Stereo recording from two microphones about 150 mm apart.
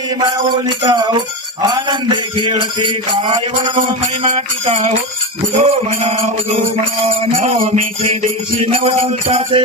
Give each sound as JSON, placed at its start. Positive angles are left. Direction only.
{"t": 0.2, "sound": "music", "side_deg": -30}
{"t": 3.8, "sound": "music", "side_deg": -45}